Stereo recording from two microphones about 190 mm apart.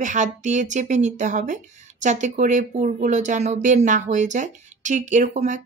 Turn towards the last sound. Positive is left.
turn(degrees=-40)  # may be behind; listen again after turning